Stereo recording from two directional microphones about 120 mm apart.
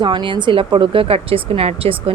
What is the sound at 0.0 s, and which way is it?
A woman's voice, 40° right (ahead or behind).